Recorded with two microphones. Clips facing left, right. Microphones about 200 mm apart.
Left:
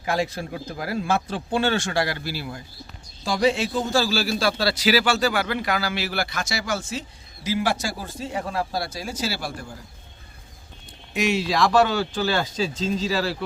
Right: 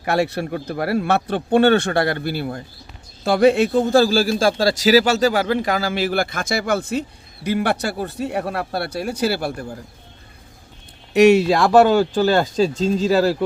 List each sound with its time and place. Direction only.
0.0 s a man's voice: 65° right (ahead or behind)
11.1 s a man's voice: 65° right (ahead or behind); by 13.3 s 45° right (ahead or behind)